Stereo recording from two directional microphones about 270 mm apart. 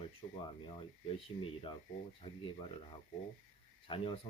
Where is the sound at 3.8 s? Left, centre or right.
Centre.